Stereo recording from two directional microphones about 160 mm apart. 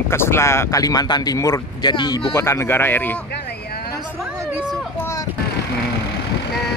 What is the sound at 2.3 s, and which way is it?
Speech, 15° left (ahead or behind).